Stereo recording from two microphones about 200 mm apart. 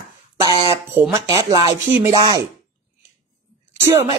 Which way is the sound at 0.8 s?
10° right (ahead or behind).